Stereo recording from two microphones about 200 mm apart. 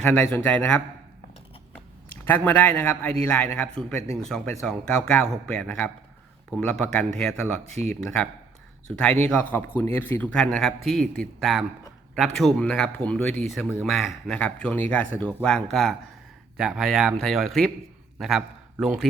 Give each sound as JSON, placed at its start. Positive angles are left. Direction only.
{"t": 0.1, "sound": "speech", "side_deg": 5}
{"t": 2.2, "sound": "speech", "side_deg": 10}
{"t": 7.7, "sound": "speech", "side_deg": -35}
{"t": 9.0, "sound": "a man's voice", "side_deg": 5}